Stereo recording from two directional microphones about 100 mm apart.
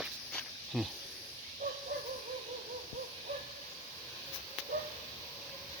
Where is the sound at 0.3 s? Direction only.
Centre (ahead or behind).